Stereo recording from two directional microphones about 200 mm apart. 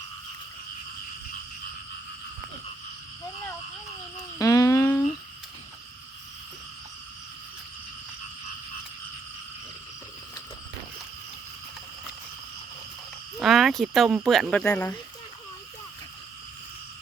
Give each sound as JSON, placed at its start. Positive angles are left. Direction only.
{"t": 4.4, "sound": "humming", "side_deg": 15}
{"t": 13.4, "sound": "speech", "side_deg": 0}